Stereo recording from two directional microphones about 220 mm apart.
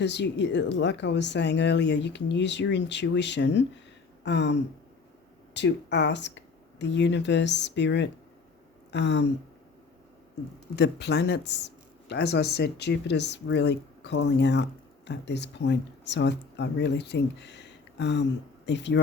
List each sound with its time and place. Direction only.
0.0 s speech: 50° left (ahead or behind)
4.2 s a sound: 50° left (ahead or behind)
5.5 s speech: 50° left (ahead or behind)
10.8 s speech: 50° left (ahead or behind)